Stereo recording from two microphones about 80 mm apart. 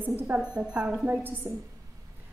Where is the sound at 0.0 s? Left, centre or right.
Right.